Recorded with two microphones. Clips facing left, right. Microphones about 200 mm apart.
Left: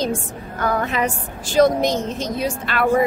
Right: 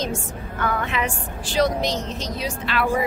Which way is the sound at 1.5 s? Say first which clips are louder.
Left 6 dB; 50° left (ahead or behind).